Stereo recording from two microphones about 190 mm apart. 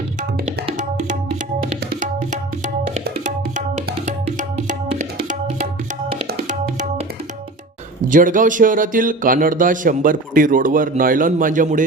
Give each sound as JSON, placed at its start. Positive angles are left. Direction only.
{"t": 0.4, "sound": "tabla", "side_deg": -40}
{"t": 2.9, "sound": "tabla", "side_deg": -40}
{"t": 4.0, "sound": "music", "side_deg": -40}
{"t": 8.0, "sound": "speech", "side_deg": -45}